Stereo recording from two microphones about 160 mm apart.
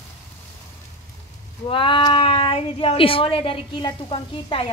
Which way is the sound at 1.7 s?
30° left (ahead or behind).